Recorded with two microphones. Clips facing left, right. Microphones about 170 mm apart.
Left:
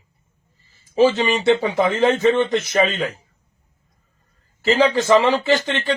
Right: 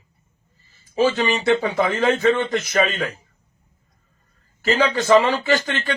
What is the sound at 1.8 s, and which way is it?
A man's voice, 20° left (ahead or behind).